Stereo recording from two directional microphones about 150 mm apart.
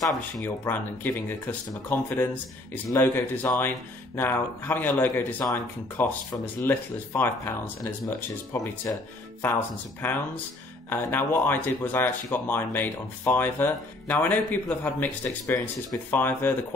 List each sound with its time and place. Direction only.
0.0 s speech: 15° left (ahead or behind)
10.0 s speech: 10° left (ahead or behind)